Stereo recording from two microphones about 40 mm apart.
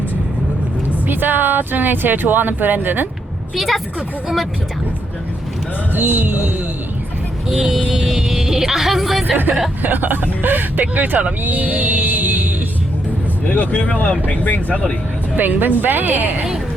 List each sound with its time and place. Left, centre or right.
1.0 s speech: right
3.5 s a woman's voice: centre
5.9 s speech: right
7.4 s speech: centre
9.8 s speech: right
13.5 s speech: left
15.4 s speech: right